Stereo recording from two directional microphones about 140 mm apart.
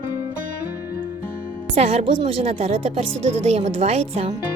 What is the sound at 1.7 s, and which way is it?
A woman's voice, 50° right (ahead or behind).